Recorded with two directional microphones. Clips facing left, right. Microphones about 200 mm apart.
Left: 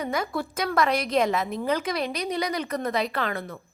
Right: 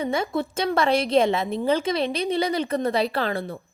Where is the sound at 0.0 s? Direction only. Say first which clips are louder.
Right 3 dB; 25° right (ahead or behind).